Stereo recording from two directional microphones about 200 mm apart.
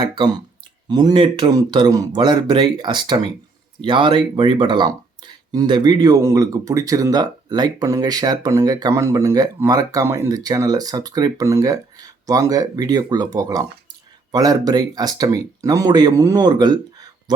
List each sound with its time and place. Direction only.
0.9 s speech: 20° right (ahead or behind)